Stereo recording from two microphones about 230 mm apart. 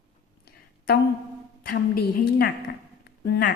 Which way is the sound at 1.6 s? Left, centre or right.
Left.